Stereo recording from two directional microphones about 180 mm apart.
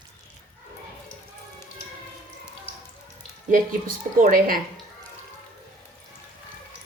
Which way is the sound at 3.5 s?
50° right (ahead or behind).